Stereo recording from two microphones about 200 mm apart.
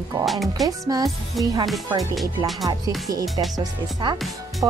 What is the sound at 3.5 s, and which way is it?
Speech, 20° right (ahead or behind).